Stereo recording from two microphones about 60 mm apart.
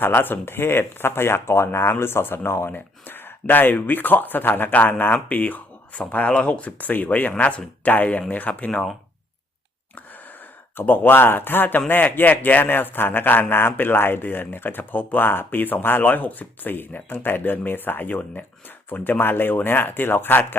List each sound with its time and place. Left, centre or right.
0.0 s a man's voice: left
10.8 s a man's voice: left